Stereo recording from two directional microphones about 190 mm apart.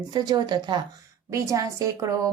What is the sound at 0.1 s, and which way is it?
A woman's voice, 20° right (ahead or behind).